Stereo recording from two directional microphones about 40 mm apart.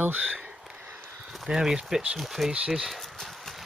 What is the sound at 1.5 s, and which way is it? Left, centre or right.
Speech, right.